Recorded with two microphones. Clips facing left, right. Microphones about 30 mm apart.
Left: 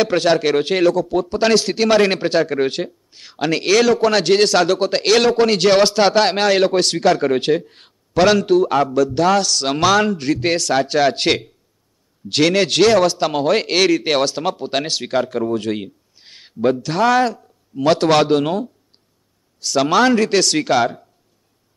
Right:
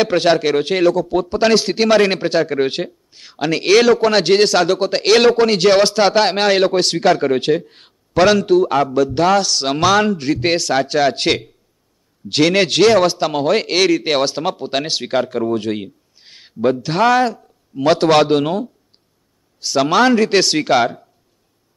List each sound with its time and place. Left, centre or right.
0.4 s a man's voice: centre
3.6 s a man's voice: centre
8.9 s a man's voice: centre
14.2 s a man's voice: centre
14.6 s a man's voice: centre
15.0 s a man's voice: centre
16.8 s a man's voice: centre
17.1 s a man's voice: centre
19.8 s a man's voice: centre